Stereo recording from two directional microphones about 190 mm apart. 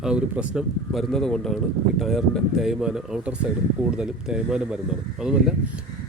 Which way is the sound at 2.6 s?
5° right (ahead or behind).